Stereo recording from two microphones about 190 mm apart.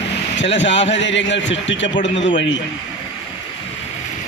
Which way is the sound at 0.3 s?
70° left (ahead or behind).